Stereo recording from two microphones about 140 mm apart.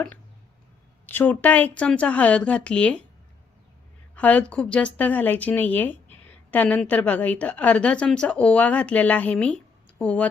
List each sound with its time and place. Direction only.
1.0 s a woman's voice: 15° left (ahead or behind)
4.1 s a woman's voice: 10° left (ahead or behind)